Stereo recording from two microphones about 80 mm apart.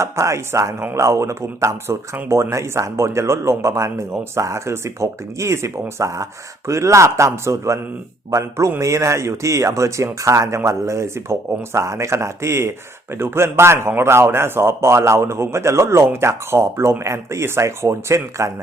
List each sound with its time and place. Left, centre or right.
0.0 s a man's voice: right